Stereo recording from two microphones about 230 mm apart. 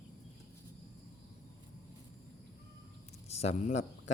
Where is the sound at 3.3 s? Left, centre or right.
Left.